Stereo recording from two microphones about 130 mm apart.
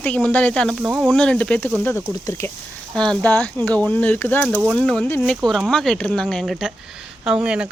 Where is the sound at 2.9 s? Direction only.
5° left (ahead or behind).